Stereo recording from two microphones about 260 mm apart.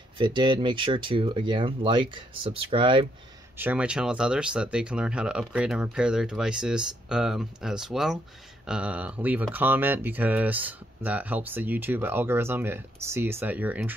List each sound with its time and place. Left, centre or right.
0.2 s speech: centre
3.5 s speech: centre